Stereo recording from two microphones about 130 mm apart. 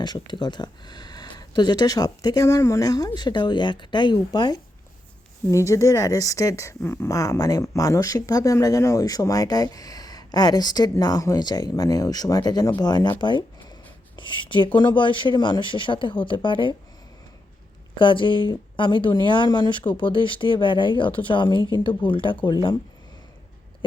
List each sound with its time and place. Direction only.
0.0 s speech: 35° left (ahead or behind)
5.5 s a woman's voice: 25° left (ahead or behind); by 16.7 s 40° left (ahead or behind)
17.9 s speech: 40° left (ahead or behind)